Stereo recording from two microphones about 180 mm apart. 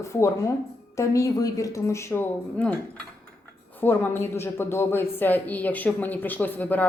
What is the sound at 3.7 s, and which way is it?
A woman's voice, 10° left (ahead or behind).